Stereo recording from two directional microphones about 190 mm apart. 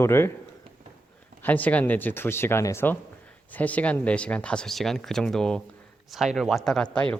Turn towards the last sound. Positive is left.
turn(degrees=5)  # may be behind; listen again after turning